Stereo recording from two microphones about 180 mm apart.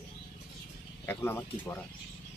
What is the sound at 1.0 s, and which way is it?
Speech, 10° left (ahead or behind).